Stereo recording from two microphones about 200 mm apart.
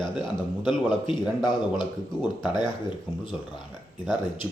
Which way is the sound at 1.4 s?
20° left (ahead or behind).